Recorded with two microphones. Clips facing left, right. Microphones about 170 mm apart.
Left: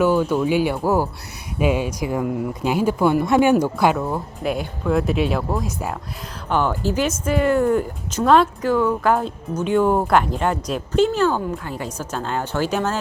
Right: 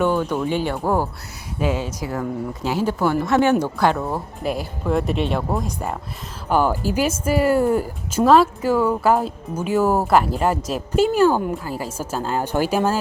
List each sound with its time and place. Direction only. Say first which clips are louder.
0.0 s speech: left 2 dB; 10° left (ahead or behind)
3.9 s speech: left 1 dB; centre (ahead or behind)
6.5 s speech: right 1 dB; 10° right (ahead or behind)